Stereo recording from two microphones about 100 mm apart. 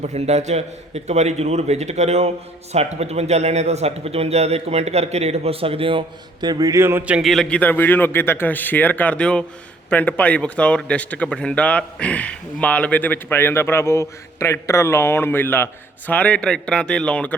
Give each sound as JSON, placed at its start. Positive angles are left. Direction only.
{"t": 0.1, "sound": "a man's voice", "side_deg": -90}
{"t": 6.5, "sound": "speech", "side_deg": -35}
{"t": 7.0, "sound": "a man's voice", "side_deg": -10}
{"t": 7.3, "sound": "speech", "side_deg": 5}